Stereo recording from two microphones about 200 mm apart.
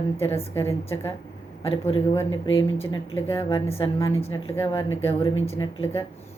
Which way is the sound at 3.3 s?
30° left (ahead or behind).